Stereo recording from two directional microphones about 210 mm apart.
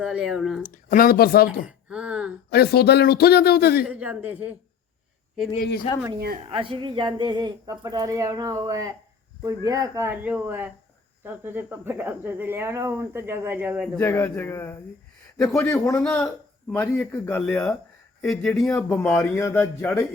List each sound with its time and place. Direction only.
0.0 s speech: 5° right (ahead or behind)
0.6 s speech: 40° left (ahead or behind)
1.6 s a sound: 5° right (ahead or behind)
2.5 s speech: 50° left (ahead or behind)
3.8 s speech: 5° right (ahead or behind)
5.5 s speech: 45° left (ahead or behind)
6.1 s a woman's voice: 45° right (ahead or behind)
6.5 s speech: 25° right (ahead or behind); by 14.0 s 5° right (ahead or behind)
14.0 s a man's voice: 10° left (ahead or behind)